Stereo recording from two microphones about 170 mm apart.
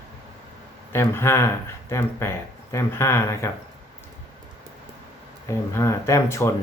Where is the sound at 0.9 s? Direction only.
15° left (ahead or behind).